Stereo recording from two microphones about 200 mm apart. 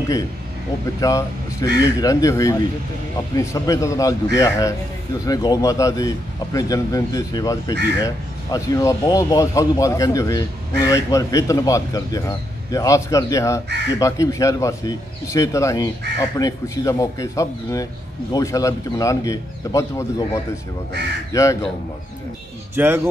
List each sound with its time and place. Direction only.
1.0 s a man's voice: 15° left (ahead or behind)
22.8 s speech: 10° right (ahead or behind)